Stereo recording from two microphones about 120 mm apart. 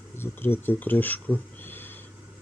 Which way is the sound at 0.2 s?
20° left (ahead or behind).